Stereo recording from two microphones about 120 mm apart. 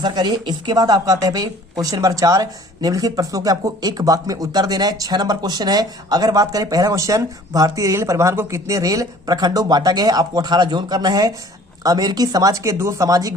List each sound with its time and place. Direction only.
0.0 s speech: 35° right (ahead or behind)